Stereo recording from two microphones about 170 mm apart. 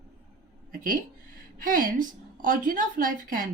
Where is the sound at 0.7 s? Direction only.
55° right (ahead or behind).